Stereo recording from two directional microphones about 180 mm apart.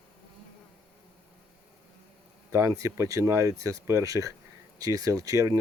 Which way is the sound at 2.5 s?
15° right (ahead or behind).